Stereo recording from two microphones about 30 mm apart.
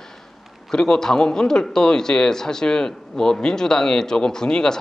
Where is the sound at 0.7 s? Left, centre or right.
Left.